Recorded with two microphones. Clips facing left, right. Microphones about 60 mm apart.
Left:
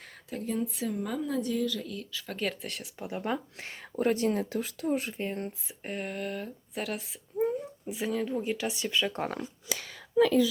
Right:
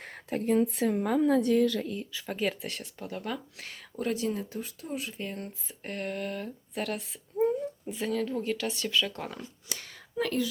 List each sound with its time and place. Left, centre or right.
0.0 s speech: right
1.9 s speech: right
2.2 s speech: centre
3.0 s speech: left
4.1 s speech: left
4.4 s speech: left
4.9 s speech: left
5.1 s speech: left
5.6 s speech: centre; by 9.2 s left